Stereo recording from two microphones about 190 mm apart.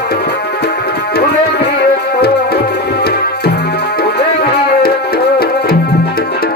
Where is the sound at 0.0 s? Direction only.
60° left (ahead or behind).